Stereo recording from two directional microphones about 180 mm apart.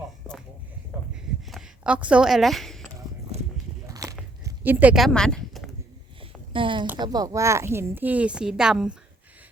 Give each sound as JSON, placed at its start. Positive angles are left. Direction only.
{"t": 1.5, "sound": "a sound", "side_deg": -5}
{"t": 3.8, "sound": "biting", "side_deg": -20}
{"t": 6.5, "sound": "a woman's voice", "side_deg": -30}